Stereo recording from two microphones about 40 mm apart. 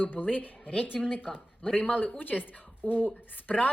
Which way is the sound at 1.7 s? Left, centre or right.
Left.